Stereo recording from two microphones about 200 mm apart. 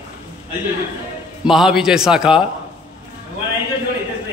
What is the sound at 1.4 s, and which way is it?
A man's voice, centre (ahead or behind).